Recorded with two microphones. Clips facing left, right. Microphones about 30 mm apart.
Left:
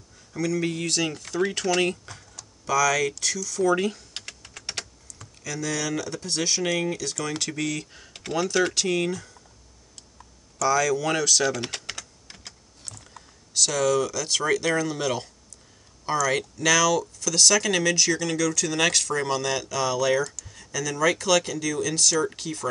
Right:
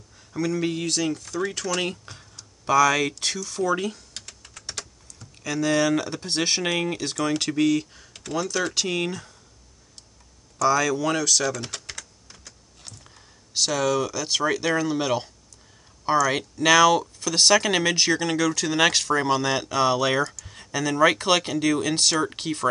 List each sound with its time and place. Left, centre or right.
0.6 s speech: centre
0.9 s speech: centre
2.0 s speech: right
3.6 s speech: centre
4.1 s typing: left
5.4 s speech: right
7.6 s speech: centre
7.9 s computer keyboard: centre
8.3 s speech: centre
8.7 s speech: centre
10.6 s speech: centre
11.1 s speech: centre
11.6 s speech: left
13.1 s speech: centre; by 22.7 s right